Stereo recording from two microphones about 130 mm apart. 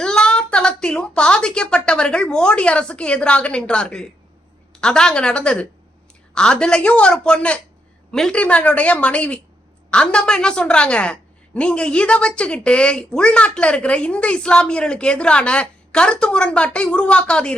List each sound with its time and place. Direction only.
0.0 s a woman's voice: 5° left (ahead or behind)